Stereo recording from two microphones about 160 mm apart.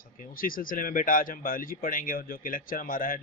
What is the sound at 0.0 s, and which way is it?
Speech, 65° left (ahead or behind).